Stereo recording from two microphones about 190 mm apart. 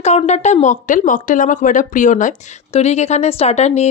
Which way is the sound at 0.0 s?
35° left (ahead or behind).